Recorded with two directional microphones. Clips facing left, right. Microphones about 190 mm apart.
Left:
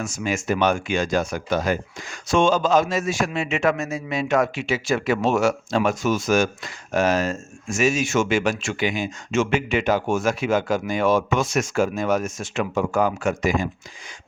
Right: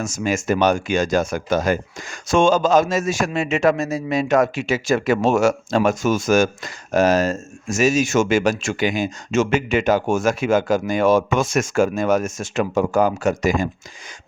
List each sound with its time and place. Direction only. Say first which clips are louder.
0.0 s speech: right 3 dB; 45° right (ahead or behind)